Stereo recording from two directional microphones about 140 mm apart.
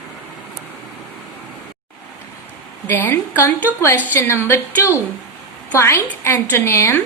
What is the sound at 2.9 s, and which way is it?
A woman's voice, 15° left (ahead or behind).